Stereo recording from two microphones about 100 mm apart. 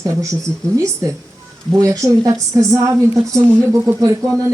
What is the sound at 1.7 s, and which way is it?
A woman's voice, 30° right (ahead or behind).